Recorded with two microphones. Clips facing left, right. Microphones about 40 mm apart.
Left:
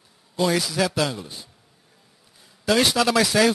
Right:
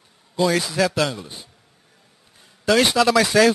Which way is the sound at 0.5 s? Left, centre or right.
Centre.